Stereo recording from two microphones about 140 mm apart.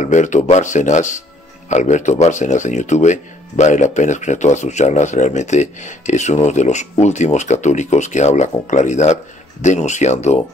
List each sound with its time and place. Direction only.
0.0 s speech: 60° left (ahead or behind)